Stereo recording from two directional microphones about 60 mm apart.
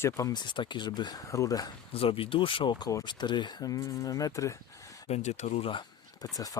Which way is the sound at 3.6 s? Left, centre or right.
Left.